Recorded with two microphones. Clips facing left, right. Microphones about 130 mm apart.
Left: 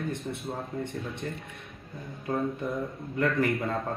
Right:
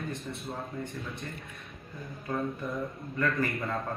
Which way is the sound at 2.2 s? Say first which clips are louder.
Left 3 dB; 25° left (ahead or behind).